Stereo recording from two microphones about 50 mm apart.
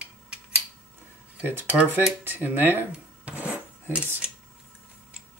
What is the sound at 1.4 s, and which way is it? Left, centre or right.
Speech, right.